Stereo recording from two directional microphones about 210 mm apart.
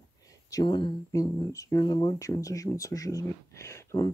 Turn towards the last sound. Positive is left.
turn(degrees=15)  # may be behind; listen again after turning